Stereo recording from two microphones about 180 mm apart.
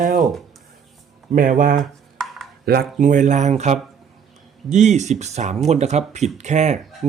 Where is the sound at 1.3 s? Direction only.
50° right (ahead or behind).